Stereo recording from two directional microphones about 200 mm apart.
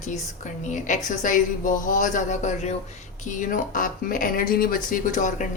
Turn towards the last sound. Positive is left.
turn(degrees=40)  # may be behind; listen again after turning